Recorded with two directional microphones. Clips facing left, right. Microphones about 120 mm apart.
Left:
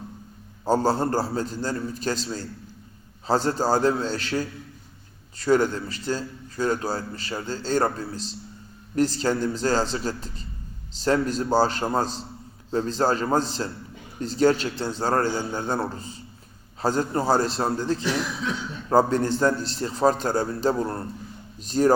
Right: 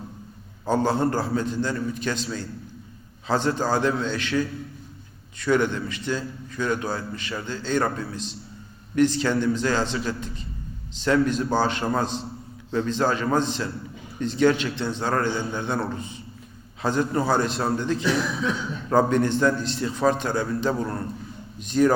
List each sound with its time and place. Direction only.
0.7 s a man's voice: 35° left (ahead or behind)
16.8 s a man's voice: 35° left (ahead or behind)